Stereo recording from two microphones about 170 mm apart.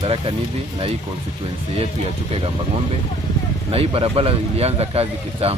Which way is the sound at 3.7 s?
35° right (ahead or behind).